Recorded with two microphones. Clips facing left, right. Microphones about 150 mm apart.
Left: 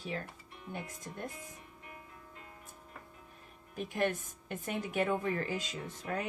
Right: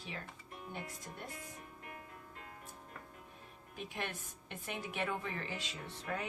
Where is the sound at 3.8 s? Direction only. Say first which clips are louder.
Left 10 dB; 45° left (ahead or behind).